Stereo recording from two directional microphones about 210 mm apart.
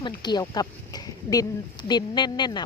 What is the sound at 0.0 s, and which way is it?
Speech, 20° left (ahead or behind).